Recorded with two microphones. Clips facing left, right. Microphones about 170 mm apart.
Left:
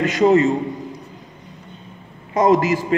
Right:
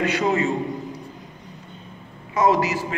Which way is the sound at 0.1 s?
40° left (ahead or behind).